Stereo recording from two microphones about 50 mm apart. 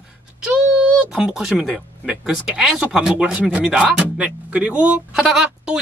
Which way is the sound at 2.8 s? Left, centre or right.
Right.